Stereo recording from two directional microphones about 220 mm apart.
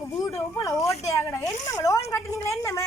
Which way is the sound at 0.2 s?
15° left (ahead or behind).